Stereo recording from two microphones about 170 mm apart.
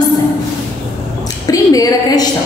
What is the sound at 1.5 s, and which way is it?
Speech, 20° left (ahead or behind).